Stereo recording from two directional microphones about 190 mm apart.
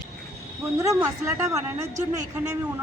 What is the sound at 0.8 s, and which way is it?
Speech, 15° right (ahead or behind).